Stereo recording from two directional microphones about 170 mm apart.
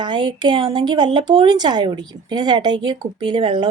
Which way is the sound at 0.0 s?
25° right (ahead or behind).